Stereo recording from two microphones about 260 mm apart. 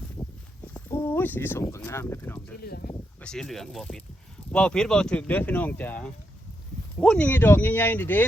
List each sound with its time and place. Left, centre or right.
0.7 s speech: centre
2.6 s speech: left
3.2 s speech: centre